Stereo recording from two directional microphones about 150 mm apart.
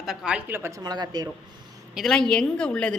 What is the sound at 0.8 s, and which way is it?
Speech, 25° right (ahead or behind).